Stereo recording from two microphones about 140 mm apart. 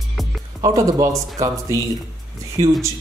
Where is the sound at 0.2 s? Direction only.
Centre (ahead or behind).